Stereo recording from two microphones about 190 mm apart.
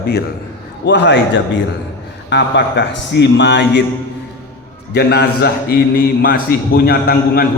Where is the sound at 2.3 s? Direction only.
70° left (ahead or behind).